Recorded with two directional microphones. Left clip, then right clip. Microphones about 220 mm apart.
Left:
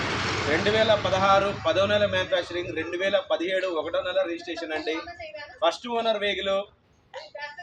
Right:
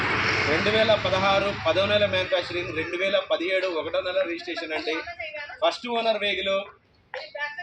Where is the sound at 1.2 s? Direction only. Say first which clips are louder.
Left 1 dB; 5° right (ahead or behind).